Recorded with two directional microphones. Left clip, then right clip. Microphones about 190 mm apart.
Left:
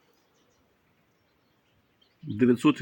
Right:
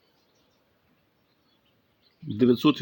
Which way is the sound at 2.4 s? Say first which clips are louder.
Right 1 dB; 15° right (ahead or behind).